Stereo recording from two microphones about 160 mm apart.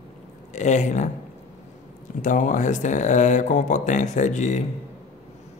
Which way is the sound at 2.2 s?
55° left (ahead or behind).